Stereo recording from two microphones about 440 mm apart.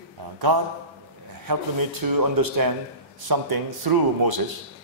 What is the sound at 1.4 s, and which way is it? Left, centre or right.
Speech, right.